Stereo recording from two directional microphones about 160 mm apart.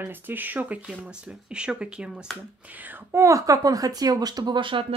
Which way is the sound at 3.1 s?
20° right (ahead or behind).